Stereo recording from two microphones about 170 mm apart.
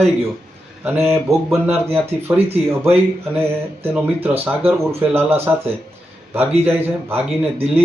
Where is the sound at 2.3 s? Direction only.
35° right (ahead or behind).